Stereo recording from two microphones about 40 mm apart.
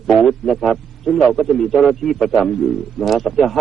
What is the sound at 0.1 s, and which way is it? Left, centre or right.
A man's voice, centre.